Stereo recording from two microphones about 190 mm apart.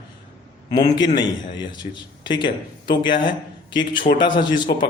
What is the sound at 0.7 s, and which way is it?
Speech, 20° left (ahead or behind).